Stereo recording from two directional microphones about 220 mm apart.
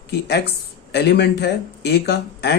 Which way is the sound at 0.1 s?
50° left (ahead or behind).